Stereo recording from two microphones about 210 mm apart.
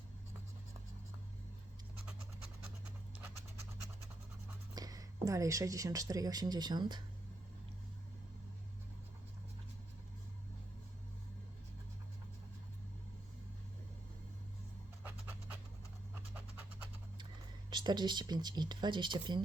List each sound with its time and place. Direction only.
4.7 s speech: 15° right (ahead or behind)
15.0 s scratch: 5° right (ahead or behind)
17.7 s speech: 20° right (ahead or behind)